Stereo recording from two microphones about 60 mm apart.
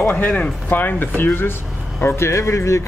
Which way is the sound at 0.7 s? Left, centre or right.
Left.